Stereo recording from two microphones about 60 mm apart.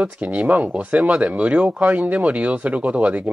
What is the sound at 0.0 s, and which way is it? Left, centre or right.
Speech, right.